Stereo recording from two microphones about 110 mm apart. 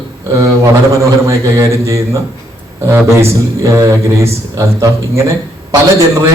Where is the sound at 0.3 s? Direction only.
30° right (ahead or behind).